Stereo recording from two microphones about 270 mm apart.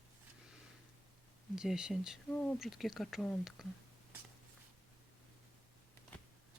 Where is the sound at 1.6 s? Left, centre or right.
Centre.